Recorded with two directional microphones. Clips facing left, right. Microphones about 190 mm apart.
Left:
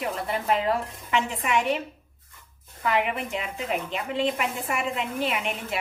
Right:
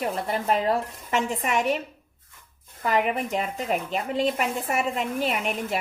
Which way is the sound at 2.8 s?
40° right (ahead or behind).